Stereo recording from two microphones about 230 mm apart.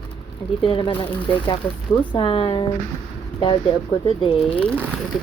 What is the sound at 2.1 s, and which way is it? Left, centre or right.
Speech, left.